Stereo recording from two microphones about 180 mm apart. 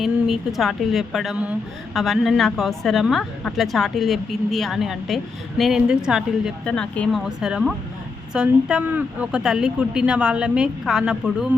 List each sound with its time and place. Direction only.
0.0 s a woman's voice: centre (ahead or behind)